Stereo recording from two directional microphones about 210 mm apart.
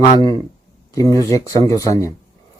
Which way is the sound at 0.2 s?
20° left (ahead or behind).